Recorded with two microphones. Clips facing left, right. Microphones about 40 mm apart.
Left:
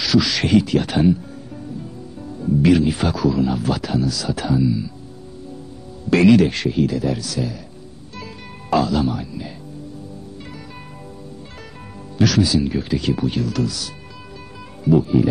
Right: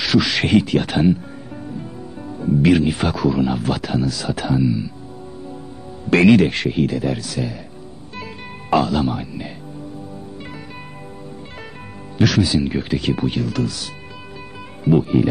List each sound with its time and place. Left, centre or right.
0.0 s speech: right
2.4 s speech: right
6.0 s speech: right
8.2 s music: right
12.2 s speech: right